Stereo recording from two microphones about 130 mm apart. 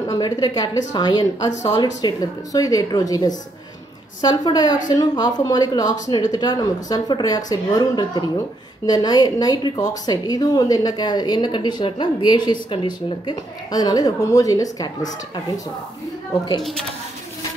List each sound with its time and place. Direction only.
0.1 s a woman's voice: 30° left (ahead or behind)